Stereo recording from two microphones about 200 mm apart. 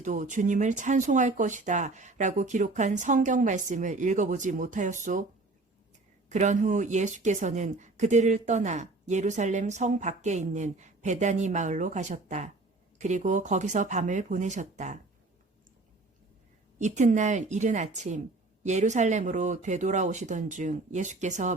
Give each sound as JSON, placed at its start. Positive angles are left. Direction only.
{"t": 0.0, "sound": "speech", "side_deg": -40}
{"t": 6.2, "sound": "speech", "side_deg": -35}
{"t": 16.7, "sound": "speech", "side_deg": -35}